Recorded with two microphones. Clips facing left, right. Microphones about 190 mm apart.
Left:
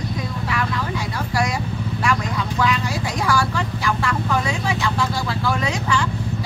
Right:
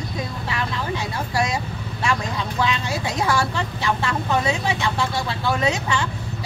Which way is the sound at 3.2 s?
25° right (ahead or behind).